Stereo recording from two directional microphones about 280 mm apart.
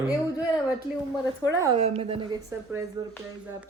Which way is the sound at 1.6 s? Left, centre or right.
Right.